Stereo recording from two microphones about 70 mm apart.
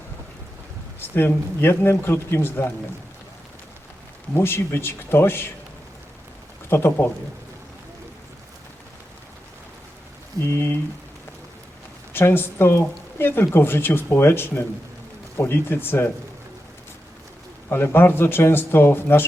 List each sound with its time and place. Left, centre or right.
0.9 s speech: left
4.4 s speech: left
6.7 s speech: left
10.5 s speech: left
12.1 s speech: left
17.7 s speech: left